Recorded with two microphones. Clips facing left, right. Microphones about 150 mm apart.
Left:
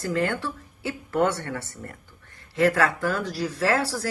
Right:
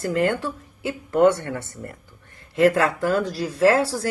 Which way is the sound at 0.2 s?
20° right (ahead or behind).